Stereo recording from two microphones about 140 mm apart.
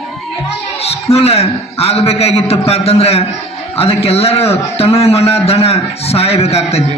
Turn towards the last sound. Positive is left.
turn(degrees=50)  # may be behind; listen again after turning